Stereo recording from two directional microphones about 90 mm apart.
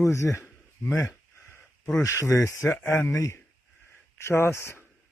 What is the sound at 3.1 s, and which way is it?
Speech, 35° left (ahead or behind).